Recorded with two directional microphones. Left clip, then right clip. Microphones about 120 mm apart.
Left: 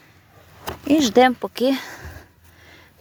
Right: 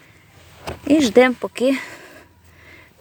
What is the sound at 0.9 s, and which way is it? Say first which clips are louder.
Speech: right 1 dB; 10° right (ahead or behind).